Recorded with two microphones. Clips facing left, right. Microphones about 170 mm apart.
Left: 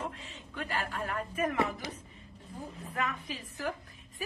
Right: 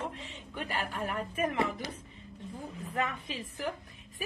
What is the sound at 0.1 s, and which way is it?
A woman's voice, 20° right (ahead or behind).